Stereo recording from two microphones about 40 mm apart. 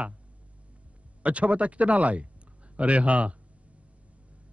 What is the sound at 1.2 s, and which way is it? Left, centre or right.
A man's voice, right.